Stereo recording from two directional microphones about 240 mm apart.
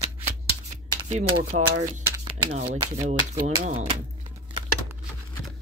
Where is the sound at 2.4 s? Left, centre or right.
Right.